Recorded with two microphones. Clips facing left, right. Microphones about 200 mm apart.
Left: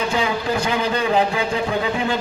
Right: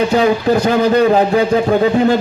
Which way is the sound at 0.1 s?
40° right (ahead or behind).